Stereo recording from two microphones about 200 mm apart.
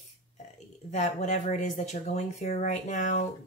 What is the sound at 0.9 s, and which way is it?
Speech, 35° left (ahead or behind).